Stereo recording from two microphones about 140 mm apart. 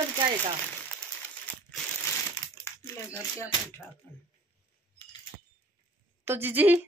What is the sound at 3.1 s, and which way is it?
Speech, 30° left (ahead or behind).